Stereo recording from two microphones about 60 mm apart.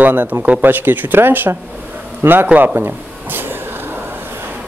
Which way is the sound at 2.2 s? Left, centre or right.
Right.